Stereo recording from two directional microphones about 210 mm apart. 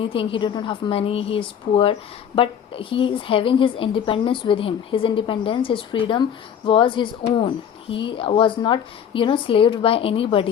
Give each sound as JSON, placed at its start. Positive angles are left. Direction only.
{"t": 0.0, "sound": "a woman's voice", "side_deg": 25}